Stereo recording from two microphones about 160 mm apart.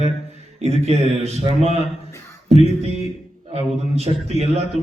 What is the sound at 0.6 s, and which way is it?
A man's voice, 40° right (ahead or behind).